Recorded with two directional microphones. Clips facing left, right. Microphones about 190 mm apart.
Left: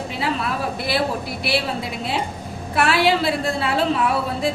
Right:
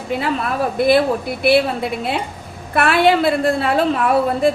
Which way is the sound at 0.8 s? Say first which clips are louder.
Right 12 dB; 50° right (ahead or behind).